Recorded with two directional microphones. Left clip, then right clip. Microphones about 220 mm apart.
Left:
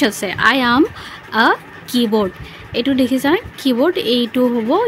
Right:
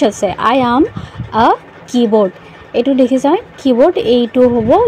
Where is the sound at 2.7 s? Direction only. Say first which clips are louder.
Right 5 dB; centre (ahead or behind).